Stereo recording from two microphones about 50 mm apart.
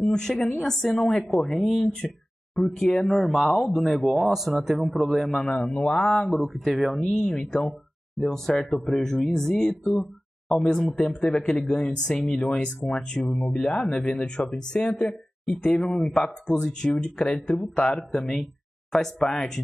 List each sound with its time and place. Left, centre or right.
0.0 s a woman's voice: centre
1.9 s speech: centre
5.4 s speech: centre
6.0 s speech: centre
7.0 s speech: centre